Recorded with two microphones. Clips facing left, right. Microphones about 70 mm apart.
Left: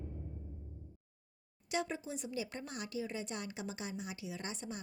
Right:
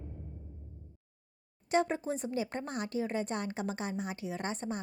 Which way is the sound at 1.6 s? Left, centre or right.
Right.